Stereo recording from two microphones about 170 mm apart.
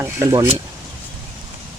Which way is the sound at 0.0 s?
15° right (ahead or behind).